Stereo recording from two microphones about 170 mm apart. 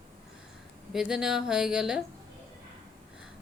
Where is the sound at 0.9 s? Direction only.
5° right (ahead or behind).